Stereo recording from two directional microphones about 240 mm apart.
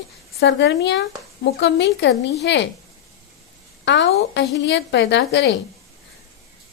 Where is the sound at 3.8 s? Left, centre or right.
Left.